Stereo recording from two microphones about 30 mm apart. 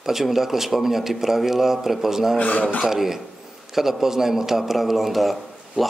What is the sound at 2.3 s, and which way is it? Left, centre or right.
Speech, left.